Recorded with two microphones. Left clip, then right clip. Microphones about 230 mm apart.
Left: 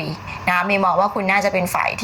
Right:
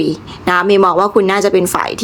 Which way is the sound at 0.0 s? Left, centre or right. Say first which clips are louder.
Right 7 dB; right.